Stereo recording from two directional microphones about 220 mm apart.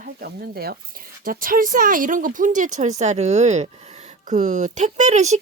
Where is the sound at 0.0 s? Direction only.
45° right (ahead or behind).